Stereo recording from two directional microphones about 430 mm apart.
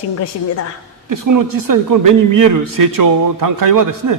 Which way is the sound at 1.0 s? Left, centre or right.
Right.